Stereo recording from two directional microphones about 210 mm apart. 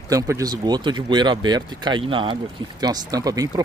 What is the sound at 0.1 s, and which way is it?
Speech, 15° right (ahead or behind).